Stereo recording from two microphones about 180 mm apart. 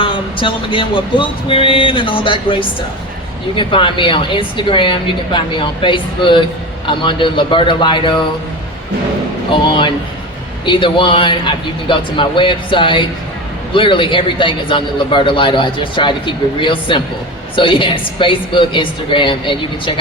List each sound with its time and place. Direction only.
0.0 s a man's voice: 30° left (ahead or behind)
9.5 s a man's voice: 30° left (ahead or behind)